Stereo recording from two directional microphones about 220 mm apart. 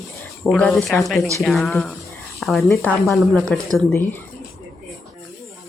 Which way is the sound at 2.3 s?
Centre (ahead or behind).